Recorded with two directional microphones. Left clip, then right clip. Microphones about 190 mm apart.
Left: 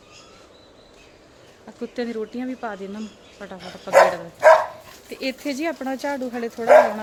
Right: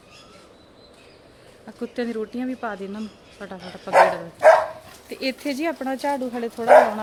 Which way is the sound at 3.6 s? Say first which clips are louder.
Left 1 dB; 60° left (ahead or behind).